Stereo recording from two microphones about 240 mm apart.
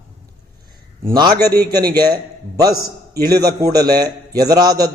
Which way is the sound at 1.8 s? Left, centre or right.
Right.